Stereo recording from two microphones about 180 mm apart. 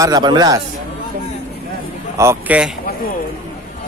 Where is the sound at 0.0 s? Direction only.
25° right (ahead or behind).